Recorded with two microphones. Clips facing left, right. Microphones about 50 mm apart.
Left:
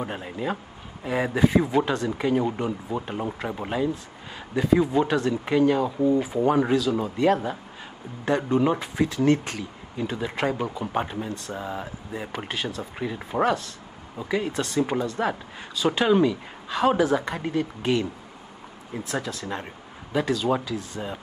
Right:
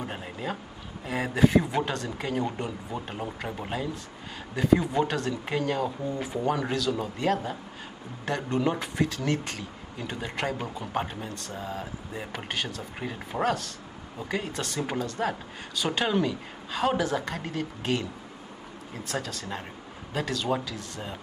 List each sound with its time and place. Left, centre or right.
0.0 s speech: centre
11.5 s speech: centre
12.1 s speech: centre
19.0 s speech: centre